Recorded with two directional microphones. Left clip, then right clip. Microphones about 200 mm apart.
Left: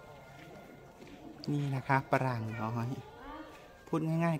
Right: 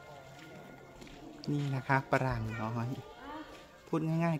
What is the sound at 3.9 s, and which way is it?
Speech, 10° left (ahead or behind).